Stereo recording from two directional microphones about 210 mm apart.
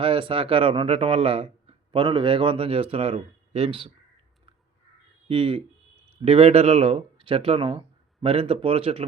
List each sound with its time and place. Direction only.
0.0 s speech: 25° right (ahead or behind)
5.3 s speech: 25° right (ahead or behind)